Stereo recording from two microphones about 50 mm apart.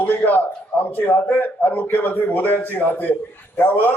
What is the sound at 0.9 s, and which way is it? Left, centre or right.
A man's voice, left.